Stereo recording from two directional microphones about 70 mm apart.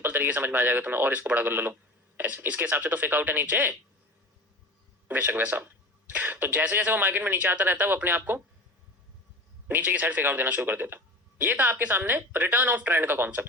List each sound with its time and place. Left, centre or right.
0.0 s speech: right
5.0 s speech: right
9.6 s speech: right